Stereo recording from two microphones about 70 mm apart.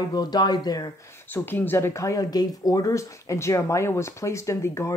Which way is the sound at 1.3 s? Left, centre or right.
Left.